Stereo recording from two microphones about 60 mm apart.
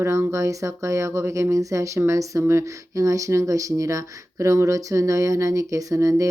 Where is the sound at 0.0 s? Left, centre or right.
Right.